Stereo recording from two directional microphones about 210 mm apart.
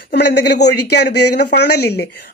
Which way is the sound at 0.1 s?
50° left (ahead or behind).